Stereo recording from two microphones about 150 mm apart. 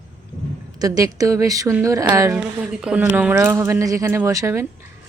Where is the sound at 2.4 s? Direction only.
5° right (ahead or behind).